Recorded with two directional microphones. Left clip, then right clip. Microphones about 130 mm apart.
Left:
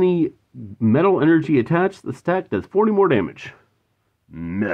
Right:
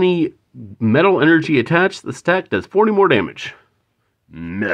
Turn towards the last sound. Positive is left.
turn(degrees=-10)  # may be behind; listen again after turning